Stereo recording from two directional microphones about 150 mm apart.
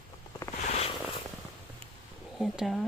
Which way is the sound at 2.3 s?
Centre (ahead or behind).